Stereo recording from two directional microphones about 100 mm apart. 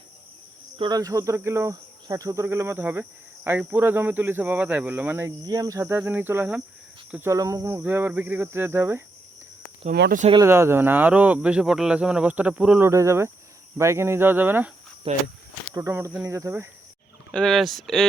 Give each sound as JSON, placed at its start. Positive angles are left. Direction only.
{"t": 0.8, "sound": "speech", "side_deg": -40}
{"t": 5.5, "sound": "speech", "side_deg": -35}
{"t": 7.2, "sound": "speech", "side_deg": -30}
{"t": 10.4, "sound": "speech", "side_deg": -25}
{"t": 12.8, "sound": "speech", "side_deg": -30}
{"t": 15.1, "sound": "speech", "side_deg": -70}
{"t": 15.7, "sound": "speech", "side_deg": -30}
{"t": 17.3, "sound": "speech", "side_deg": 5}